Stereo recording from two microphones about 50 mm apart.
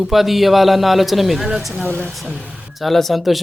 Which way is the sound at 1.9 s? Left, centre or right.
Right.